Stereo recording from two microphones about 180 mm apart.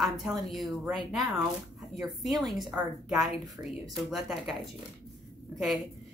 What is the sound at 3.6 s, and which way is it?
Speech, 15° right (ahead or behind).